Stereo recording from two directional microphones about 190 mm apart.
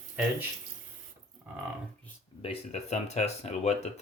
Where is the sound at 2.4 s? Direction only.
30° left (ahead or behind).